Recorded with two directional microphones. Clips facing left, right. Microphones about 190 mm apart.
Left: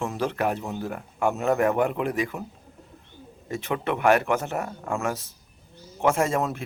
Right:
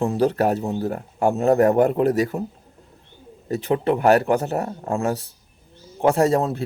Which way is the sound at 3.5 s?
35° right (ahead or behind).